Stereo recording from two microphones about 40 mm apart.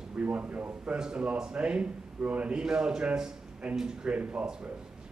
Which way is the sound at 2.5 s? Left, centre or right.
Centre.